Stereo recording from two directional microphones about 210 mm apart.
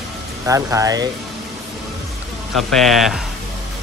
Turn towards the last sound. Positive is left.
turn(degrees=0)  # may be behind; listen again after turning